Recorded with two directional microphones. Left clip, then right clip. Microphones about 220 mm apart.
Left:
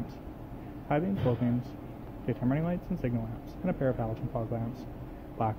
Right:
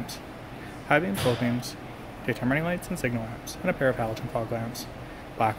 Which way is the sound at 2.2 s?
10° right (ahead or behind).